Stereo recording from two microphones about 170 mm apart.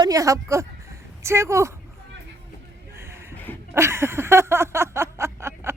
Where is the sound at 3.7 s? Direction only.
15° right (ahead or behind).